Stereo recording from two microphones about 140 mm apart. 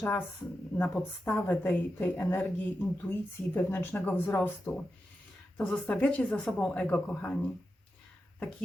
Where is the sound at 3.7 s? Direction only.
15° left (ahead or behind).